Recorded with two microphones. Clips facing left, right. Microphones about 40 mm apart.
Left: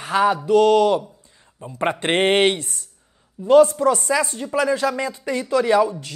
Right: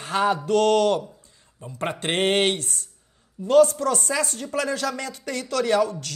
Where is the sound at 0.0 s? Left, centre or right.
Left.